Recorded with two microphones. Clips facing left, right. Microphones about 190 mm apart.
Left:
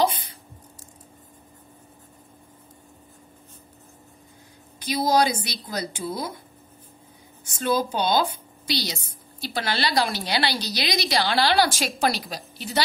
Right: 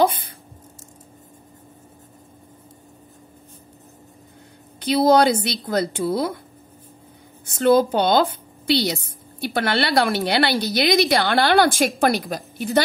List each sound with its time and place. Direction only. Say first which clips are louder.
0.0 s speech: right 4 dB; 55° right (ahead or behind)
4.7 s a woman's voice: right 6 dB; 60° right (ahead or behind)
7.4 s a woman's voice: right 8 dB; 60° right (ahead or behind)